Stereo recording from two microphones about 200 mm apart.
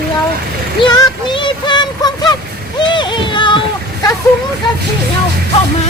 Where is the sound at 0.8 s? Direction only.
20° left (ahead or behind).